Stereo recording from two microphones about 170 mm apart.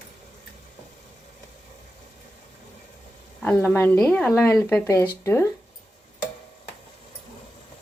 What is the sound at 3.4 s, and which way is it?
Speech, 10° left (ahead or behind).